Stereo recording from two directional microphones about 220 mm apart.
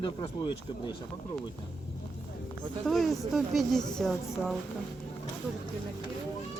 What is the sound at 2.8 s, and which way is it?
Speech, centre (ahead or behind).